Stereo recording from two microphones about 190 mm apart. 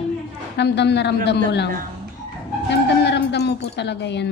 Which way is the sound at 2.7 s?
65° left (ahead or behind).